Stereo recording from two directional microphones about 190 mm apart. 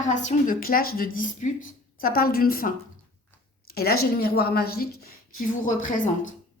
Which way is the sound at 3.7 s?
55° left (ahead or behind).